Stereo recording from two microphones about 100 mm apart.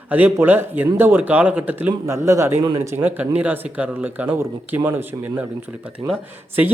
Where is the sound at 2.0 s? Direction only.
30° right (ahead or behind).